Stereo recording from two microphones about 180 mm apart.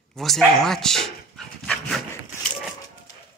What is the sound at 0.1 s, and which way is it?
Dog, centre (ahead or behind).